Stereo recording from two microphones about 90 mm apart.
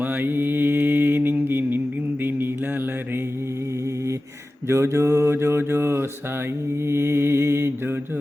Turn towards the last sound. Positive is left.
turn(degrees=-30)  # may be behind; listen again after turning